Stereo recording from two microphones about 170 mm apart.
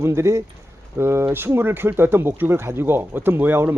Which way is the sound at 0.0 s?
15° right (ahead or behind).